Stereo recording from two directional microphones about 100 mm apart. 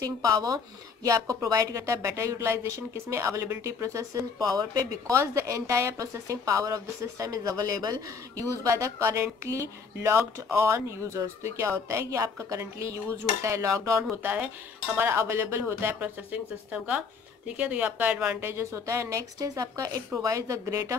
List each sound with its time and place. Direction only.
0.0 s speech: 35° right (ahead or behind)
14.2 s speech: 15° right (ahead or behind)